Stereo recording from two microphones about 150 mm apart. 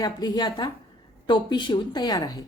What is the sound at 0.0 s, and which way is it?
Speech, 30° left (ahead or behind).